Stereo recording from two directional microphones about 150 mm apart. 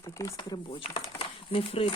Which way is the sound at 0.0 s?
20° left (ahead or behind).